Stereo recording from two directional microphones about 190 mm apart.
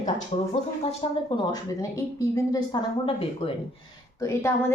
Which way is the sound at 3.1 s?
30° left (ahead or behind).